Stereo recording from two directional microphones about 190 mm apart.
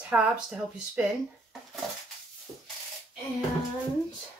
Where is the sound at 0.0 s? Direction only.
5° right (ahead or behind).